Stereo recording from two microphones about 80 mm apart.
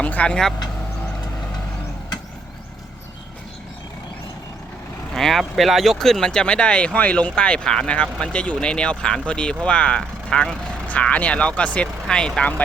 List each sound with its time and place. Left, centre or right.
0.0 s speech: centre
5.1 s speech: centre